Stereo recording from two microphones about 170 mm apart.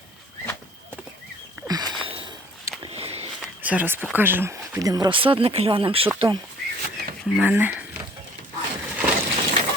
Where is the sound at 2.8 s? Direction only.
35° right (ahead or behind).